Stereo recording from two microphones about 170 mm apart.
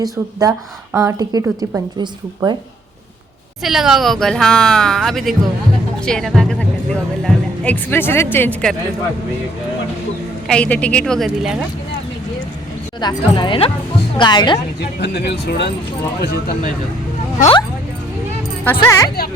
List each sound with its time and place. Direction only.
0.0 s speech: 20° right (ahead or behind)
3.6 s speech: centre (ahead or behind)
10.5 s speech: 5° left (ahead or behind)
13.0 s speech: 25° left (ahead or behind)
14.8 s speech: 85° left
16.2 s speech: 65° left (ahead or behind)
18.6 s speech: 15° left (ahead or behind)